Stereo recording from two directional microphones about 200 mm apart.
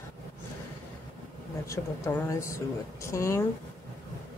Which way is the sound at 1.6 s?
15° left (ahead or behind).